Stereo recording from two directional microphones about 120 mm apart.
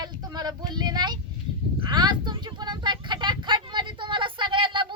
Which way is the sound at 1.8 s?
40° right (ahead or behind).